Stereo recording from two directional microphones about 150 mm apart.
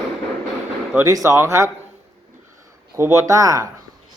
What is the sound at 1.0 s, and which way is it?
Speech, 20° right (ahead or behind).